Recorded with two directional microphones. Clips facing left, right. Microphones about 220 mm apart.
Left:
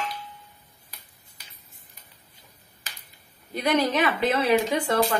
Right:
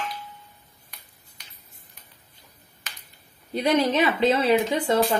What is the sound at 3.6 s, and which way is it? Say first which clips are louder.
A woman's voice: right 2 dB; 25° right (ahead or behind).